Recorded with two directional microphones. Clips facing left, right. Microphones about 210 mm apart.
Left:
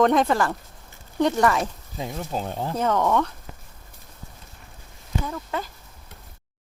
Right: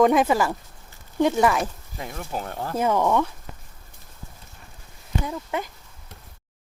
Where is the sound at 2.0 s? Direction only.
15° left (ahead or behind).